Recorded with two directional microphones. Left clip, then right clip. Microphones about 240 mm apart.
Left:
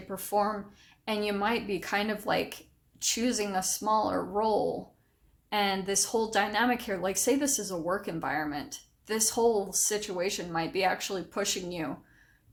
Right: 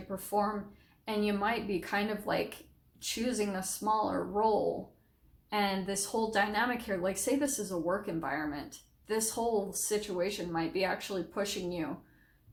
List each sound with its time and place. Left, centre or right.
0.1 s a woman's voice: left